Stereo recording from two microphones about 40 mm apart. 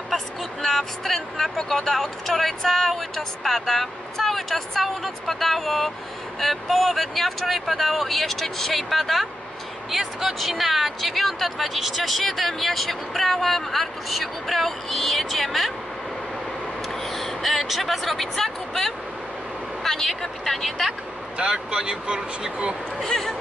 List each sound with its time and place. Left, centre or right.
0.1 s speech: centre
16.9 s a sound: centre
19.8 s speech: centre
21.4 s speech: right
23.0 s speech: centre